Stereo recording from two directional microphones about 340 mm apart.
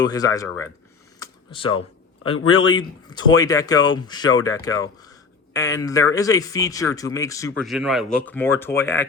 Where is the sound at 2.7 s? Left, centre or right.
Centre.